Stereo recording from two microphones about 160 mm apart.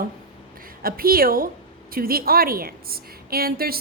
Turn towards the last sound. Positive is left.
turn(degrees=-70)  # may be behind; listen again after turning